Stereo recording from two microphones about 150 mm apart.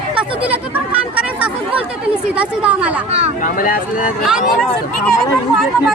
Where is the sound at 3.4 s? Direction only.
60° left (ahead or behind).